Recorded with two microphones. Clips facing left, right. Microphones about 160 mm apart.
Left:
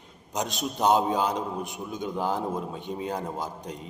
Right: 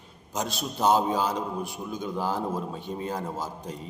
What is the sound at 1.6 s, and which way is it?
A man's voice, 20° left (ahead or behind).